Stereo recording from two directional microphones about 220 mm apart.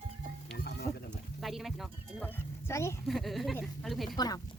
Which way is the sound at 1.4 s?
Centre (ahead or behind).